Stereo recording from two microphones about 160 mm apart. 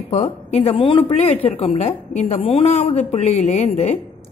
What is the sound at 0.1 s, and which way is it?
A woman's voice, 45° left (ahead or behind).